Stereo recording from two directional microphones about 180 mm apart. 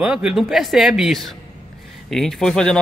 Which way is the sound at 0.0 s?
5° right (ahead or behind).